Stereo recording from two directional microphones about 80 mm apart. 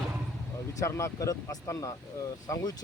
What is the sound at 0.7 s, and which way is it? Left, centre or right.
Speech, left.